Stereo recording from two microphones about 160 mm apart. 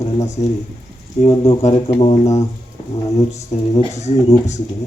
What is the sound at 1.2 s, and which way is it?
Speech, 45° left (ahead or behind).